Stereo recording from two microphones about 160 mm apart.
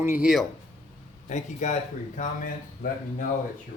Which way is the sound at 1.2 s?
45° left (ahead or behind).